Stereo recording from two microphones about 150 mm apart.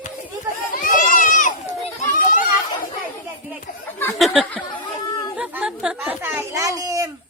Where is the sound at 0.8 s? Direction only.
60° left (ahead or behind).